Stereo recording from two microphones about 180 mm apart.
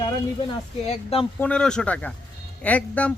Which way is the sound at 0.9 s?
35° left (ahead or behind).